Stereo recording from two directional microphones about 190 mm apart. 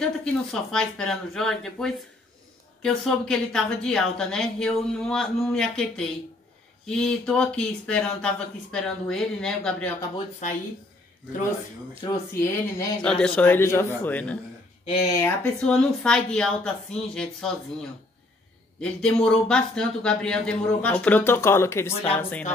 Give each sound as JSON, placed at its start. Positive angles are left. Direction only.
{"t": 0.0, "sound": "a woman's voice", "side_deg": 5}
{"t": 12.0, "sound": "speech", "side_deg": 15}
{"t": 13.0, "sound": "a woman's voice", "side_deg": 5}
{"t": 18.8, "sound": "a woman's voice", "side_deg": 5}